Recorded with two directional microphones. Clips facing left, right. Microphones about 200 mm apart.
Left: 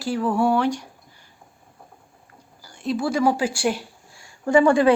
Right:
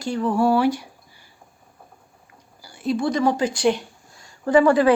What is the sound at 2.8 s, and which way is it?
Speech, 5° left (ahead or behind).